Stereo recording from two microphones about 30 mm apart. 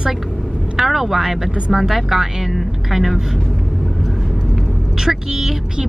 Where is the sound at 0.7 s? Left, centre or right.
Centre.